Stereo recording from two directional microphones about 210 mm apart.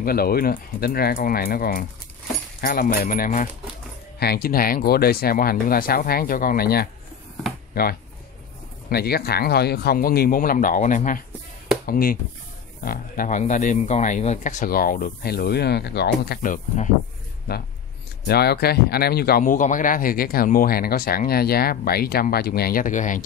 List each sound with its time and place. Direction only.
0.0 s speech: 45° left (ahead or behind)
18.2 s speech: 50° left (ahead or behind)